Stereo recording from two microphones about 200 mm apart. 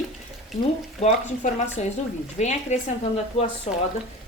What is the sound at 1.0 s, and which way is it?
Speech, 35° left (ahead or behind).